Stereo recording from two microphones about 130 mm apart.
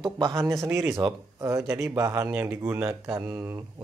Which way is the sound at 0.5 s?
20° right (ahead or behind).